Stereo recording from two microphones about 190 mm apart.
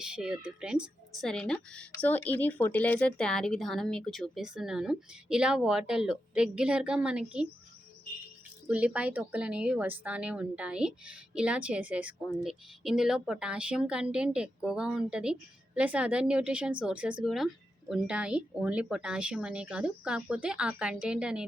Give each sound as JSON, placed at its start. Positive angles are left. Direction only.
{"t": 0.0, "sound": "a woman's voice", "side_deg": -5}
{"t": 8.6, "sound": "a woman's voice", "side_deg": -5}